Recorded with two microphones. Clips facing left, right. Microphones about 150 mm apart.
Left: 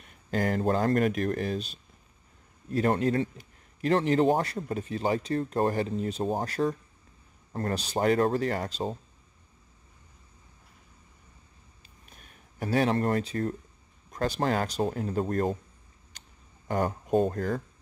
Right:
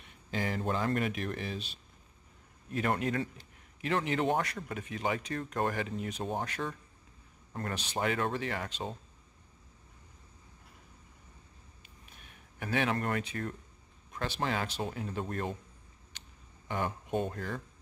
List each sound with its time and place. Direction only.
0.0 s speech: 45° left (ahead or behind)
12.1 s speech: 40° left (ahead or behind)
16.1 s a sound: 40° left (ahead or behind)